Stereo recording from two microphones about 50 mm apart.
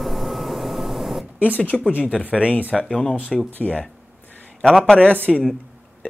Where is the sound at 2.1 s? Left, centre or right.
Centre.